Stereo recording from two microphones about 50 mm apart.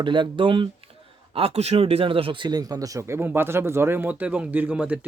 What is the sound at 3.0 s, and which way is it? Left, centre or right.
Speech, right.